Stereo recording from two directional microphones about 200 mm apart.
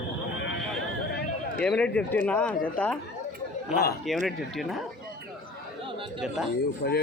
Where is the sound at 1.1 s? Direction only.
55° left (ahead or behind).